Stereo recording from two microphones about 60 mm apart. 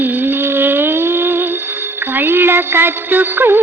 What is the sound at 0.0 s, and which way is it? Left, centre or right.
Music, right.